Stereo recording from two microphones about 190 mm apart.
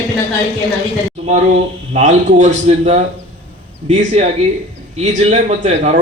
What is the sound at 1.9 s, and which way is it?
A man's voice, 40° right (ahead or behind).